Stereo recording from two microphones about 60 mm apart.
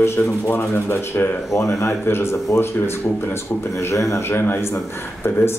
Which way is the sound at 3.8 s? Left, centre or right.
Left.